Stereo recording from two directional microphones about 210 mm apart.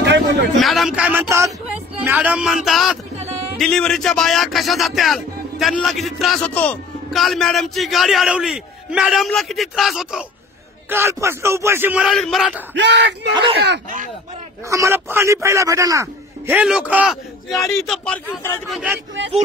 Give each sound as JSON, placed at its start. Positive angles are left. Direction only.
{"t": 0.0, "sound": "a sound", "side_deg": -55}
{"t": 0.6, "sound": "speech", "side_deg": 0}
{"t": 10.9, "sound": "a man's voice", "side_deg": -10}
{"t": 12.7, "sound": "speech", "side_deg": -55}
{"t": 13.3, "sound": "speech", "side_deg": -25}
{"t": 13.6, "sound": "speech", "side_deg": -45}
{"t": 14.7, "sound": "a man's voice", "side_deg": -15}